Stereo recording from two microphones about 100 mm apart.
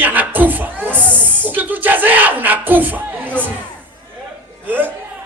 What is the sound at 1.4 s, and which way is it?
Music, 20° right (ahead or behind).